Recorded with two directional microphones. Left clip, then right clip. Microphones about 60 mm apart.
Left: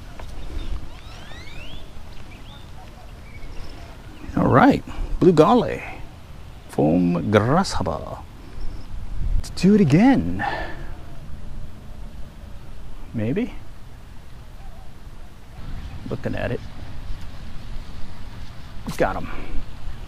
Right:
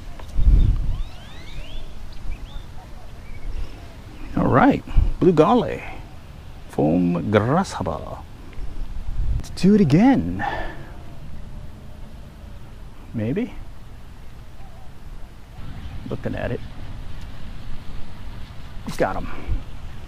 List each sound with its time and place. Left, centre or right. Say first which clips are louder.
4.3 s a sound: left 1 dB; centre
5.2 s speech: left 1 dB; centre
9.4 s speech: even; centre
13.1 s speech: even; centre
16.2 s speech: left 1 dB; centre
18.9 s speech: even; centre